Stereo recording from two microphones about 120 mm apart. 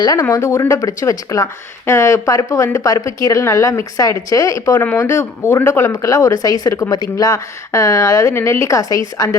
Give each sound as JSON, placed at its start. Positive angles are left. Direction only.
{"t": 0.0, "sound": "speech", "side_deg": 30}
{"t": 4.8, "sound": "speech", "side_deg": 15}